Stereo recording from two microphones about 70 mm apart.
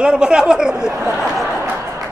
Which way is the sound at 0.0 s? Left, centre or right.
Centre.